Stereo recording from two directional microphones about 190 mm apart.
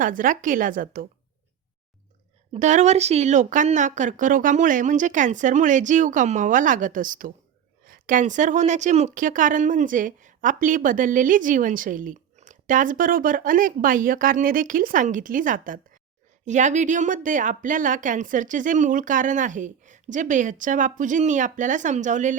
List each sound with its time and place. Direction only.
0.0 s speech: 45° right (ahead or behind)
2.5 s speech: 40° right (ahead or behind)